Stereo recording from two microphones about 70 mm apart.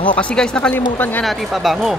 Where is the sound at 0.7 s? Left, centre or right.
Left.